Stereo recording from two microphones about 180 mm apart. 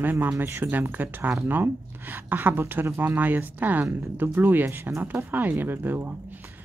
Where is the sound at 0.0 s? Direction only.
10° right (ahead or behind).